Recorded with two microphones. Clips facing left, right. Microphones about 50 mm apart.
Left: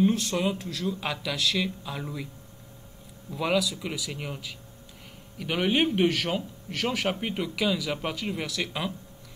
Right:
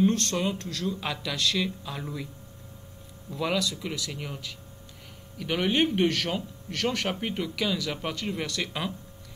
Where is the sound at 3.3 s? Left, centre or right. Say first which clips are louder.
Left 2 dB; centre.